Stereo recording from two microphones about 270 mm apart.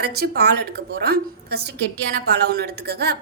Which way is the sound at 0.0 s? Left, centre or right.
Right.